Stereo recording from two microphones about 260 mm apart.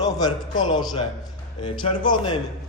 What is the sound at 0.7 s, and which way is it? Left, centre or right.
A woman's voice, centre.